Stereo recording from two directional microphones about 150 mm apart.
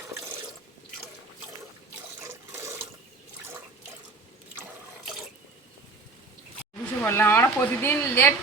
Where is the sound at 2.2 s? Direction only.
20° right (ahead or behind).